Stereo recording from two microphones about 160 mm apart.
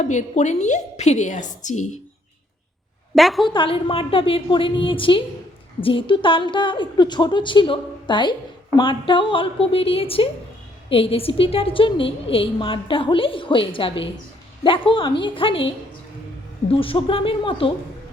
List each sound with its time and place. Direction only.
0.0 s a woman's voice: 50° left (ahead or behind)
3.2 s a woman's voice: centre (ahead or behind)
3.4 s a woman's voice: 30° left (ahead or behind)